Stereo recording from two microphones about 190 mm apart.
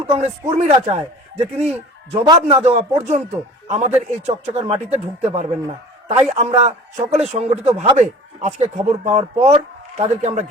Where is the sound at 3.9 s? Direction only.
35° right (ahead or behind).